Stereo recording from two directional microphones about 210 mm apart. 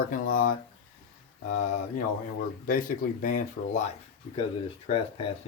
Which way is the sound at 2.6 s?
40° left (ahead or behind).